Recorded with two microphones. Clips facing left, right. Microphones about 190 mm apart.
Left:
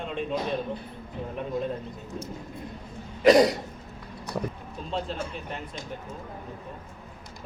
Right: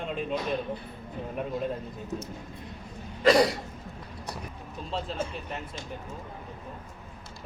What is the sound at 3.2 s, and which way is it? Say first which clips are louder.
Cough: left 3 dB; 20° left (ahead or behind).